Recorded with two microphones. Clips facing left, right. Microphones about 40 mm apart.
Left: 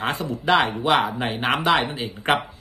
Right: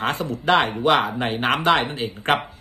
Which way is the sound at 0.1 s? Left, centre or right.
Right.